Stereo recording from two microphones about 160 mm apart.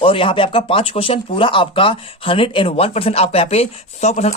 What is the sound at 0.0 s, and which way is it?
Speech, 35° left (ahead or behind).